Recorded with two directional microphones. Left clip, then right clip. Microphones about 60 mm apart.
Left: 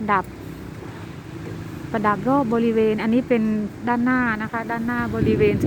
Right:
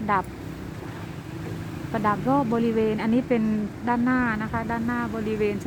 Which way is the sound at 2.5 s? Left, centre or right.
Left.